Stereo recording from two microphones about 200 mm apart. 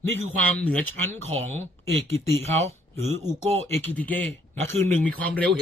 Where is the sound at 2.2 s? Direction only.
10° left (ahead or behind).